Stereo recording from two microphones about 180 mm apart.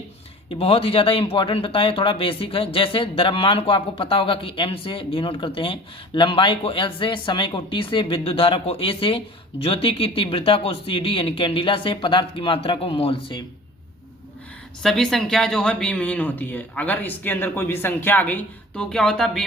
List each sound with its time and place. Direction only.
0.6 s speech: 30° left (ahead or behind)
14.8 s speech: centre (ahead or behind)